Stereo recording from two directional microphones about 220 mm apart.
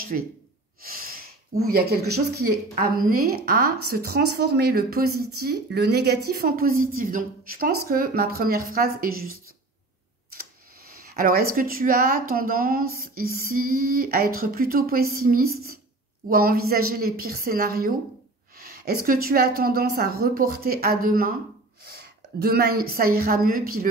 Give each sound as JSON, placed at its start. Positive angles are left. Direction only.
{"t": 0.1, "sound": "speech", "side_deg": -40}
{"t": 0.8, "sound": "a sound", "side_deg": -40}
{"t": 1.7, "sound": "a woman's voice", "side_deg": -45}
{"t": 11.0, "sound": "a woman's voice", "side_deg": -40}